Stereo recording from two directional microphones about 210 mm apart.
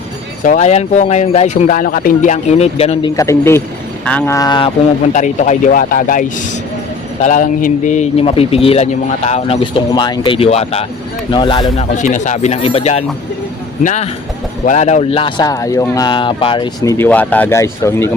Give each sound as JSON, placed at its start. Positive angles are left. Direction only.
{"t": 0.4, "sound": "speech", "side_deg": 35}
{"t": 3.2, "sound": "speech", "side_deg": 15}
{"t": 4.4, "sound": "speech", "side_deg": 20}
{"t": 5.1, "sound": "speech", "side_deg": 35}
{"t": 11.9, "sound": "speech", "side_deg": 35}